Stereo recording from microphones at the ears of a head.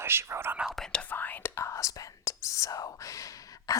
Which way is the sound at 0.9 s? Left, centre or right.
Left.